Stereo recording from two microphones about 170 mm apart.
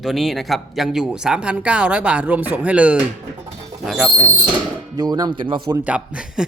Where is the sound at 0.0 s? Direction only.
Centre (ahead or behind).